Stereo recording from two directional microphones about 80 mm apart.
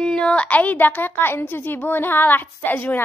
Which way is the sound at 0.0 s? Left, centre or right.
Centre.